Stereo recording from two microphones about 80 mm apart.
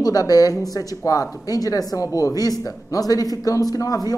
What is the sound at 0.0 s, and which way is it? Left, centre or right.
Speech, left.